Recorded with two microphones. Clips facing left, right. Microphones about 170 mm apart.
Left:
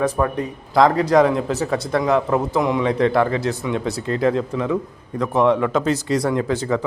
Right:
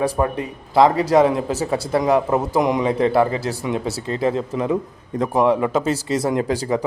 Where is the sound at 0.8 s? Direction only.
5° right (ahead or behind).